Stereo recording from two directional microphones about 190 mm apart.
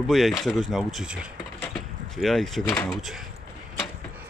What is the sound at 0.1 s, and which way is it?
Speech, centre (ahead or behind).